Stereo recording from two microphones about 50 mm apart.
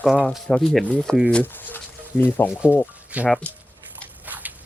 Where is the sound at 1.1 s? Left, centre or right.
Centre.